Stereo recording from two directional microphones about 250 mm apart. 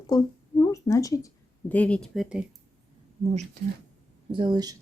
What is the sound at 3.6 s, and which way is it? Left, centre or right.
Speech, right.